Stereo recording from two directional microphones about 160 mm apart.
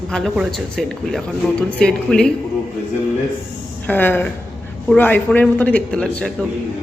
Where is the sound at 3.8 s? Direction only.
10° left (ahead or behind).